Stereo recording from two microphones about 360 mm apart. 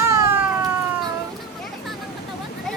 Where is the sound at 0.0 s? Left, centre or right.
Centre.